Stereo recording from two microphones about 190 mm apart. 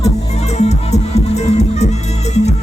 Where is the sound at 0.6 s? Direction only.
35° left (ahead or behind).